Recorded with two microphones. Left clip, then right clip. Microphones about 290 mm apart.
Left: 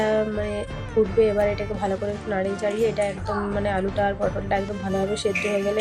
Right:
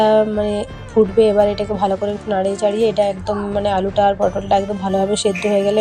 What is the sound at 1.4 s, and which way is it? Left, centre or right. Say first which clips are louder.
Speech: right 8 dB; centre.